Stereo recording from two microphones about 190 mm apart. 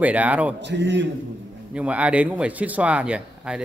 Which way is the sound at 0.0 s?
10° right (ahead or behind).